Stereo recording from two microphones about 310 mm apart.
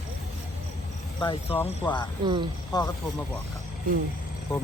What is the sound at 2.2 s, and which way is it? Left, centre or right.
Speech, centre.